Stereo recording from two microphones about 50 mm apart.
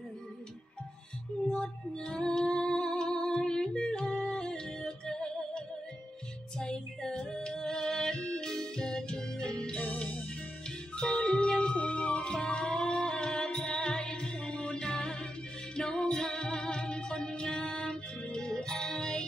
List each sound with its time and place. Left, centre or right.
1.5 s music: centre
6.6 s music: centre
11.0 s music: centre